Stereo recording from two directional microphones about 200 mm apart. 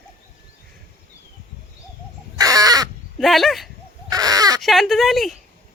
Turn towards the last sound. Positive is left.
turn(degrees=0)  # may be behind; listen again after turning